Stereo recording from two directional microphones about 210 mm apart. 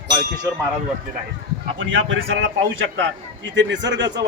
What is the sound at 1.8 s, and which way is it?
A man's voice, 65° right (ahead or behind).